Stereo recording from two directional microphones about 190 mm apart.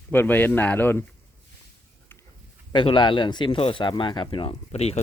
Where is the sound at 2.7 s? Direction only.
25° left (ahead or behind).